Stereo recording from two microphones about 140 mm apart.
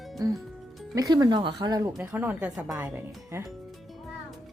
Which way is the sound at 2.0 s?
15° right (ahead or behind).